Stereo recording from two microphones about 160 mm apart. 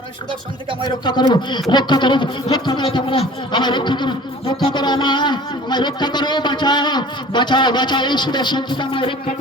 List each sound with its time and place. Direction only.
1.0 s speech: 30° left (ahead or behind)